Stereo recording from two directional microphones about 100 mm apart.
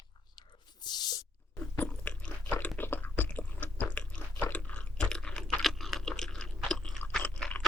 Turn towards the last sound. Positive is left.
turn(degrees=10)  # may be behind; listen again after turning